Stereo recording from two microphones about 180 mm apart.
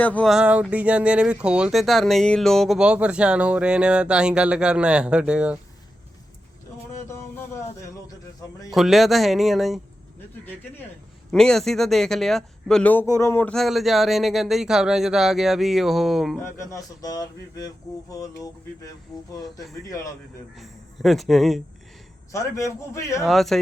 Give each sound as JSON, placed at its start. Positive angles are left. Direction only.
{"t": 0.0, "sound": "speech", "side_deg": 5}
{"t": 7.1, "sound": "a sound", "side_deg": 15}
{"t": 8.7, "sound": "speech", "side_deg": 0}
{"t": 11.3, "sound": "speech", "side_deg": 5}
{"t": 16.4, "sound": "speech", "side_deg": 15}
{"t": 20.6, "sound": "speech", "side_deg": 0}
{"t": 22.3, "sound": "a man's voice", "side_deg": 15}
{"t": 23.2, "sound": "speech", "side_deg": 0}